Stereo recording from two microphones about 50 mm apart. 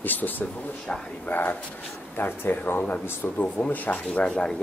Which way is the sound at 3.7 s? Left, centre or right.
Left.